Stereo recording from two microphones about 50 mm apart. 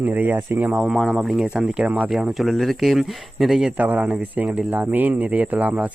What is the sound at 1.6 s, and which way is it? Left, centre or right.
Speech, right.